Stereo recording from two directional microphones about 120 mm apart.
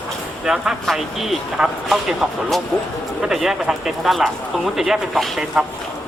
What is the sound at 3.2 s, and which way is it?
Speech, 5° right (ahead or behind).